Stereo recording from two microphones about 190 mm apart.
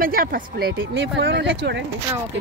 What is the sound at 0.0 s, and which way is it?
Speech, 50° right (ahead or behind).